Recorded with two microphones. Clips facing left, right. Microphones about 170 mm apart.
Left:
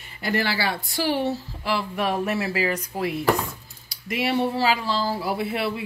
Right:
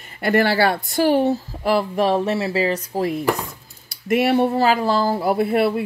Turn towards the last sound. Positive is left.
turn(degrees=-50)  # may be behind; listen again after turning